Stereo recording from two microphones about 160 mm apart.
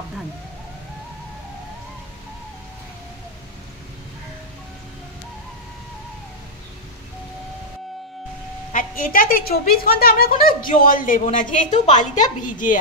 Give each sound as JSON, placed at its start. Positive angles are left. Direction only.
{"t": 8.7, "sound": "a woman's voice", "side_deg": 60}